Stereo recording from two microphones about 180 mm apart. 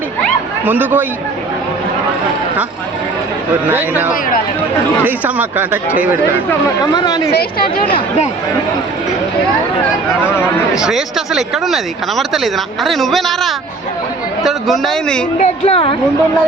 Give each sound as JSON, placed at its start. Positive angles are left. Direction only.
{"t": 0.6, "sound": "speech", "side_deg": -10}
{"t": 3.7, "sound": "speech", "side_deg": -10}
{"t": 6.9, "sound": "speech", "side_deg": 20}
{"t": 10.8, "sound": "speech", "side_deg": -5}
{"t": 15.4, "sound": "speech", "side_deg": 35}